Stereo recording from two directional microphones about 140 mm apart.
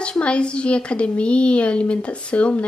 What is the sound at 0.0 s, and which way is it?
A woman's voice, 5° left (ahead or behind).